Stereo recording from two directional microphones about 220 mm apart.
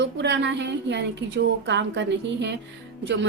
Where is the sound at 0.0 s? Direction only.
55° right (ahead or behind).